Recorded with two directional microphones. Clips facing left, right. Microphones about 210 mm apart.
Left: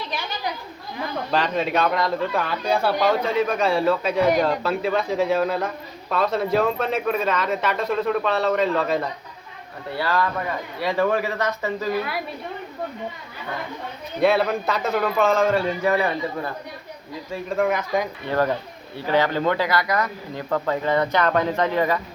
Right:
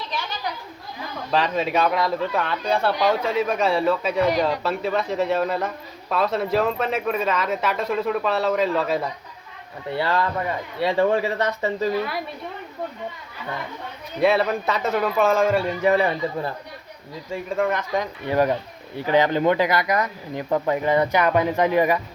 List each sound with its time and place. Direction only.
1.3 s a man's voice: centre (ahead or behind)
9.9 s speech: 25° right (ahead or behind)
14.2 s a man's voice: centre (ahead or behind)
15.8 s speech: 25° right (ahead or behind)
17.5 s a man's voice: 5° left (ahead or behind)
18.3 s speech: 15° right (ahead or behind)